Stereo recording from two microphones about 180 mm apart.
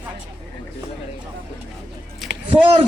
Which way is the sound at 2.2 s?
Centre (ahead or behind).